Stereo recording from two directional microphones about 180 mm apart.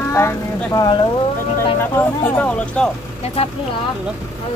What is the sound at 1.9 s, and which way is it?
Speech, 10° left (ahead or behind).